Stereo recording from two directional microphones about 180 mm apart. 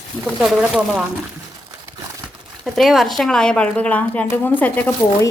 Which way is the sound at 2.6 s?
Centre (ahead or behind).